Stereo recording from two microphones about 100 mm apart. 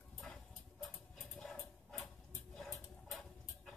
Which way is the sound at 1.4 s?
5° left (ahead or behind).